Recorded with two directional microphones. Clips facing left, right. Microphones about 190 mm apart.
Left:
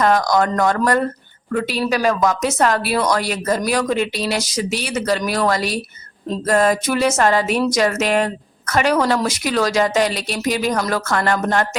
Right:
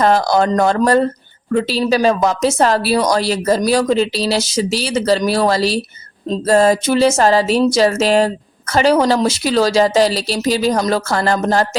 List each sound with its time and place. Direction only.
0.0 s speech: 30° right (ahead or behind)